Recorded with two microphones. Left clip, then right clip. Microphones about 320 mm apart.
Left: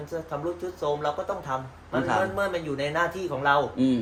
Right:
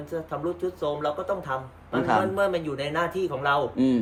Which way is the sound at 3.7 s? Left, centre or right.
Right.